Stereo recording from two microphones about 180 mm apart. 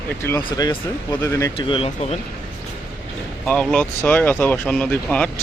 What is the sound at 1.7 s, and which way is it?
Speech, 30° left (ahead or behind).